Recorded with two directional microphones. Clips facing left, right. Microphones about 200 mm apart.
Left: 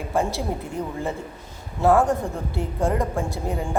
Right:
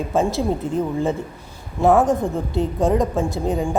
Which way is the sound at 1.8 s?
20° right (ahead or behind).